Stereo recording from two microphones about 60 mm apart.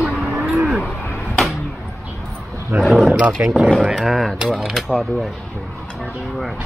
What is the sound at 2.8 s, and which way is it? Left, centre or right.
Roaring cats, centre.